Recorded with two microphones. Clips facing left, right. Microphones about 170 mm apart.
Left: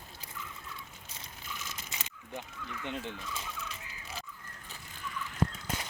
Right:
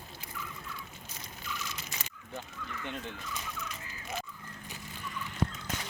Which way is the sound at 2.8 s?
15° left (ahead or behind).